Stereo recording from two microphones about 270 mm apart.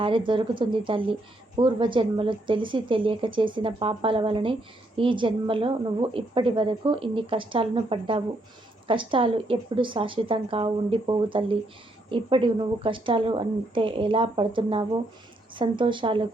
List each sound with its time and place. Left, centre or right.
0.0 s a woman's voice: centre